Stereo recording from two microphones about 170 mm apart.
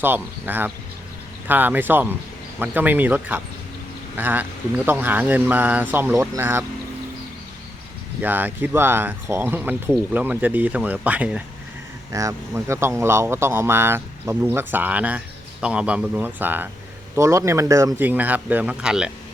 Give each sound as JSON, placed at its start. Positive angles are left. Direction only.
{"t": 0.0, "sound": "speech", "side_deg": -10}
{"t": 8.2, "sound": "speech", "side_deg": -10}